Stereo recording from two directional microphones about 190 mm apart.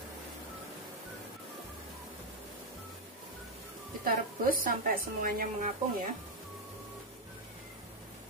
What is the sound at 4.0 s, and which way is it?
A woman's voice, 50° right (ahead or behind).